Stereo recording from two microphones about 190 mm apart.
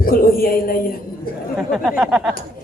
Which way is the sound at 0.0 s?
50° left (ahead or behind).